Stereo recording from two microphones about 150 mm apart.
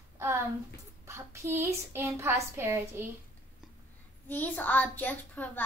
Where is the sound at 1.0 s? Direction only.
20° right (ahead or behind).